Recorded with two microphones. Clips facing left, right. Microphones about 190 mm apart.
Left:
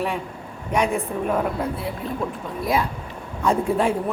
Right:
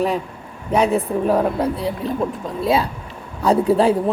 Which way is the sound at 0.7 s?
35° right (ahead or behind).